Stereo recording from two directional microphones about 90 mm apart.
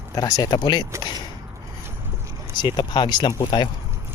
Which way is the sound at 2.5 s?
55° left (ahead or behind).